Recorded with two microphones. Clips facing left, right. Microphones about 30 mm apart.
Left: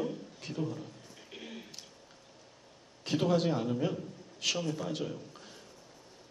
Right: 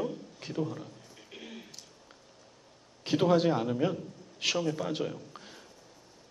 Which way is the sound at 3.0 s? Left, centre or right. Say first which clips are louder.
Right 4 dB; centre.